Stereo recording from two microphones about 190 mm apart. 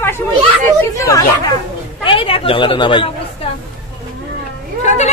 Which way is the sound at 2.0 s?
25° left (ahead or behind).